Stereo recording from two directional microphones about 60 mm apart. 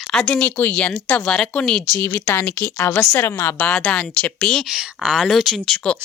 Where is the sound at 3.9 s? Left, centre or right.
Left.